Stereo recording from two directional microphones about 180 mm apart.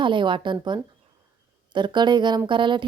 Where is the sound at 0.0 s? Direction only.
25° right (ahead or behind).